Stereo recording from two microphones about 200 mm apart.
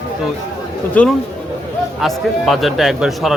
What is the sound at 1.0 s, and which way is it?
Speech, 5° left (ahead or behind).